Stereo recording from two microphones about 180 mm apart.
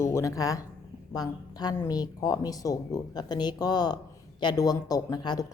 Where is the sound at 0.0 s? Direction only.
15° left (ahead or behind).